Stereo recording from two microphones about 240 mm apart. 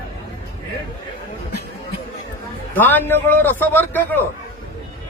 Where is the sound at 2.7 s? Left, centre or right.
Centre.